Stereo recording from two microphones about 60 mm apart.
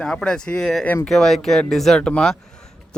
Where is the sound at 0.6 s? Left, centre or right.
Centre.